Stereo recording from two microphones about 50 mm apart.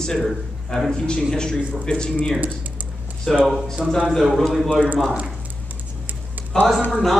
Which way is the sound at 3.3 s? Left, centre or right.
Centre.